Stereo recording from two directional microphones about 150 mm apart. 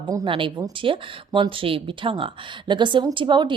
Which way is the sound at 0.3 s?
35° right (ahead or behind).